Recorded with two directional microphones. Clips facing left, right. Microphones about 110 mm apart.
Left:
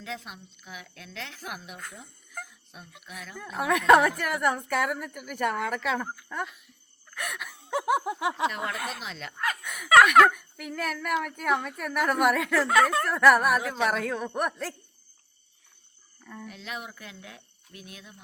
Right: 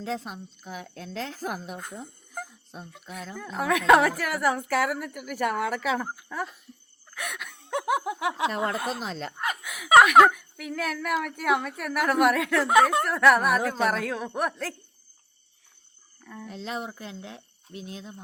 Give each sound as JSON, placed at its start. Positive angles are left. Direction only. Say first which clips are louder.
{"t": 0.0, "sound": "a woman's voice", "louder": "right 6 dB", "side_deg": -35}
{"t": 2.3, "sound": "a sound", "louder": "right 3 dB", "side_deg": -30}
{"t": 3.3, "sound": "a woman's voice", "louder": "right 1 dB", "side_deg": 5}
{"t": 7.1, "sound": "a sound", "louder": "even", "side_deg": 0}
{"t": 8.5, "sound": "a woman's voice", "louder": "right 5 dB", "side_deg": -30}
{"t": 9.4, "sound": "snicker", "louder": "left 2 dB", "side_deg": -20}
{"t": 9.6, "sound": "a sound", "louder": "even", "side_deg": -5}
{"t": 10.3, "sound": "a woman's voice", "louder": "right 2 dB", "side_deg": 0}
{"t": 12.6, "sound": "speech", "louder": "right 4 dB", "side_deg": -20}
{"t": 13.1, "sound": "a woman's voice", "louder": "even", "side_deg": 0}
{"t": 16.2, "sound": "speech", "louder": "right 1 dB", "side_deg": 0}
{"t": 16.5, "sound": "speech", "louder": "right 6 dB", "side_deg": -30}